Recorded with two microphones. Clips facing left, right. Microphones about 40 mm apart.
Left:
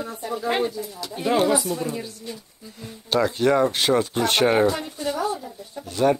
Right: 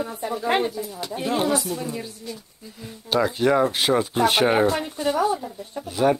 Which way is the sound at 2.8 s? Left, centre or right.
Centre.